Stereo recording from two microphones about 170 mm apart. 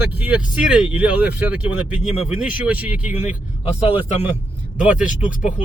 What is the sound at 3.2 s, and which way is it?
Speech, 35° left (ahead or behind).